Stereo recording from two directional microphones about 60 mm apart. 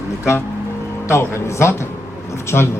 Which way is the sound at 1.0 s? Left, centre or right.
Left.